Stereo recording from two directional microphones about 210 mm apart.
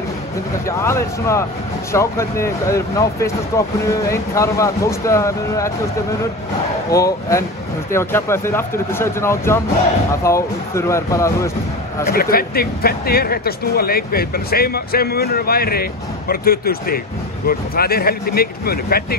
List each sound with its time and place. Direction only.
0.7 s speech: 15° left (ahead or behind)
6.9 s speech: 15° left (ahead or behind)
12.1 s speech: 45° left (ahead or behind)